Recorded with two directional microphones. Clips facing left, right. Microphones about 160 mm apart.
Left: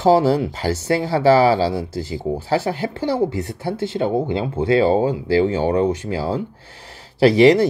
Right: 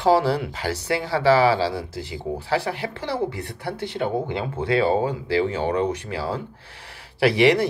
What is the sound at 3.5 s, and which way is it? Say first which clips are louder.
Speech: left 6 dB; 25° left (ahead or behind).